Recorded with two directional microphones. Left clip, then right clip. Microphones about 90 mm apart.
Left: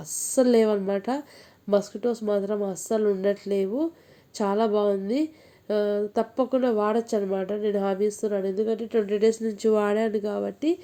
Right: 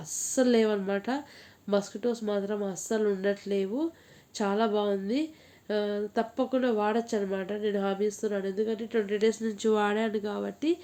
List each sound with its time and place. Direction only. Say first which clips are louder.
0.0 s speech: left 5 dB; 40° left (ahead or behind)
8.5 s a woman's voice: left 4 dB; 50° left (ahead or behind)
9.4 s speech: left 4 dB; 20° left (ahead or behind)